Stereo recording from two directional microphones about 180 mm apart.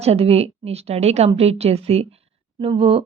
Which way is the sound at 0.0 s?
35° right (ahead or behind).